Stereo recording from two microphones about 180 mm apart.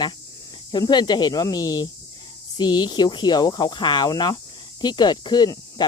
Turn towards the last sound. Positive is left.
turn(degrees=20)  # may be behind; listen again after turning